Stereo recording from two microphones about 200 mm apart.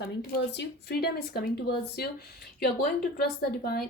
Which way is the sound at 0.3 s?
50° left (ahead or behind).